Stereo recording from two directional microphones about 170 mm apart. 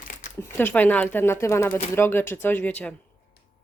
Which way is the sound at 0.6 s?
10° left (ahead or behind).